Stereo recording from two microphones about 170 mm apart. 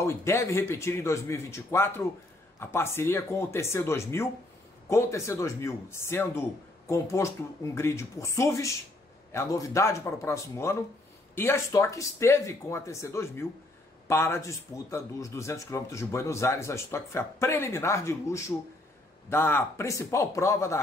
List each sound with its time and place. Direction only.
0.0 s speech: 15° left (ahead or behind)